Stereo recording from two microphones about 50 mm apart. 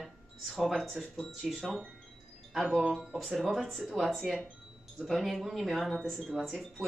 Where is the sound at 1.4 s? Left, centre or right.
Centre.